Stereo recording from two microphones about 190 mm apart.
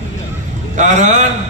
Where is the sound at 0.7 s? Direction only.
40° right (ahead or behind).